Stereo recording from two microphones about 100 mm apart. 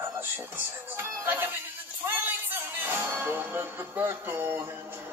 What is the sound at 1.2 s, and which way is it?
Speech, 20° right (ahead or behind).